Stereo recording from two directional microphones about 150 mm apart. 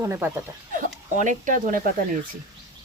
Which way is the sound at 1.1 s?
55° right (ahead or behind).